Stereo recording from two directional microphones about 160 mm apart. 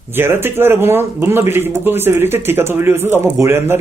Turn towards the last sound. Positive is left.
turn(degrees=-15)  # may be behind; listen again after turning